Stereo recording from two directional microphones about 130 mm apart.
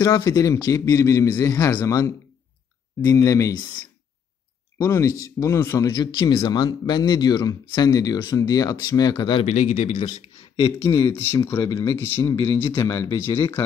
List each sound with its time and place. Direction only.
0.0 s speech: 25° left (ahead or behind)
4.7 s speech: 25° left (ahead or behind)
9.4 s speech: 60° left (ahead or behind)
10.5 s speech: 40° left (ahead or behind)
11.4 s speech: 20° left (ahead or behind)